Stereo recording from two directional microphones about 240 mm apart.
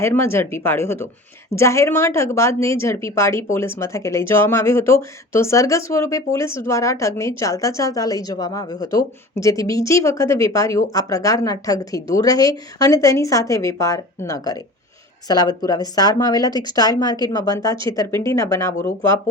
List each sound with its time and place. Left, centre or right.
0.0 s speech: centre